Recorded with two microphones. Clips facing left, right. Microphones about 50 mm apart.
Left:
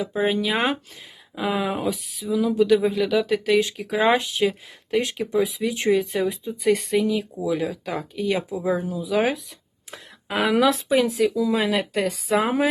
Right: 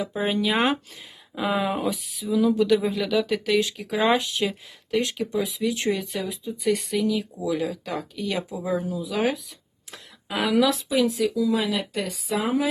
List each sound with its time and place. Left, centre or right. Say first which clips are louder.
0.0 s speech: left 2 dB; centre
4.9 s speech: left 2 dB; centre
6.6 s speech: left 3 dB; left
6.9 s speech: left 3 dB; centre
10.4 s speech: left 2 dB; left